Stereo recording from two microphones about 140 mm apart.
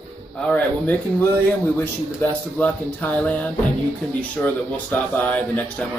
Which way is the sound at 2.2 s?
15° left (ahead or behind).